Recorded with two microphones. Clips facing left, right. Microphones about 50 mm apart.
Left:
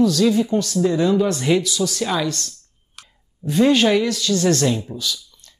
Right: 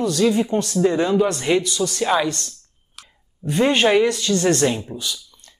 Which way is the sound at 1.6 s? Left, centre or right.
Right.